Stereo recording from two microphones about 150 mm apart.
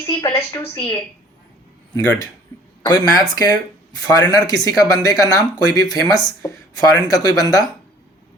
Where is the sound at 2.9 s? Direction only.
25° left (ahead or behind).